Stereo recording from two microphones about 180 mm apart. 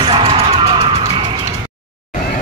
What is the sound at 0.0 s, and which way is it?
Music, 30° right (ahead or behind).